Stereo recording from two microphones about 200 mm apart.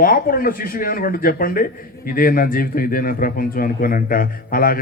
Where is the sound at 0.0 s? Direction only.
45° left (ahead or behind).